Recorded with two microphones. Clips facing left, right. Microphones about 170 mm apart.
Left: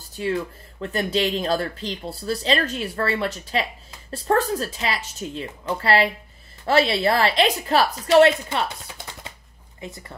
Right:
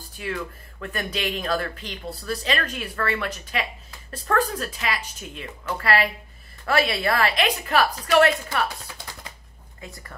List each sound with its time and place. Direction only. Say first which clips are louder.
0.2 s speech: left 6 dB; 30° left (ahead or behind)